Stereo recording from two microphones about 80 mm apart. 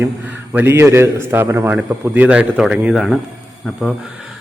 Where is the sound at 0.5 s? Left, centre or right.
Right.